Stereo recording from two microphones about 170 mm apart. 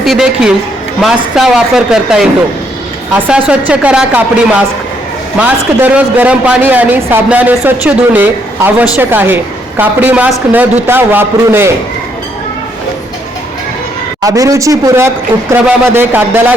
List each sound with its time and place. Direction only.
0.0 s speech: centre (ahead or behind)
3.2 s a man's voice: 5° right (ahead or behind)
5.4 s a man's voice: 10° right (ahead or behind)
14.2 s a man's voice: 20° right (ahead or behind)